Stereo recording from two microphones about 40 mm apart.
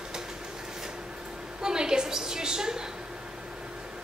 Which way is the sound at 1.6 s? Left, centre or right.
Centre.